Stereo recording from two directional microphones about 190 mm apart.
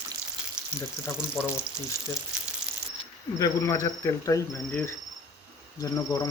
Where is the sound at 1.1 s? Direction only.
5° right (ahead or behind).